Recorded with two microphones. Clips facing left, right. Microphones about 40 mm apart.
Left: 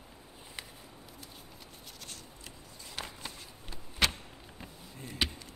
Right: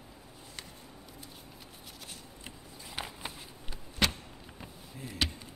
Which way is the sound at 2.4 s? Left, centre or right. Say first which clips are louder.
Right 4 dB; centre.